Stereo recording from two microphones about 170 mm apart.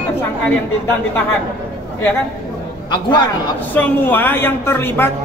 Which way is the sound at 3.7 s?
10° left (ahead or behind).